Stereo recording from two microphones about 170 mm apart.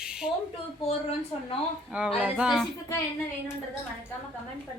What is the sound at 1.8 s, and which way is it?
Speech, 5° right (ahead or behind).